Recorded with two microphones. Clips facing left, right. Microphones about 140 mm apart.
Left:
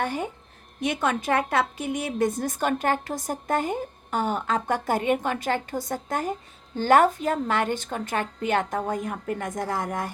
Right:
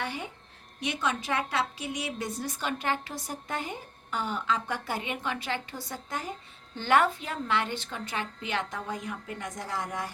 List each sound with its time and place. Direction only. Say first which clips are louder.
0.0 s a woman's voice: left 7 dB; 45° left (ahead or behind)